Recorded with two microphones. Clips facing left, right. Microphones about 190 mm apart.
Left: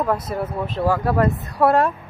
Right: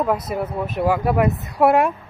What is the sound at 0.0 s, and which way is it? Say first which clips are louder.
Speech: right 1 dB; 15° right (ahead or behind).